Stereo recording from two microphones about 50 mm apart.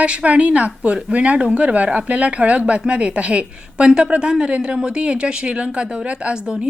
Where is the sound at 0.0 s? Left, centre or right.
Right.